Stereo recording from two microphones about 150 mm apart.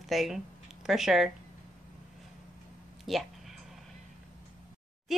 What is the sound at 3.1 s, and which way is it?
Speech, centre (ahead or behind).